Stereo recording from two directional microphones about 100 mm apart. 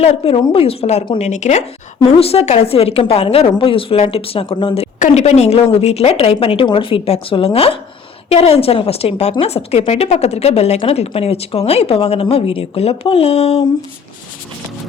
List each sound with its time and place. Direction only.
0.0 s a woman's voice: 90° left
2.0 s a woman's voice: 85° left
8.3 s a woman's voice: 90° left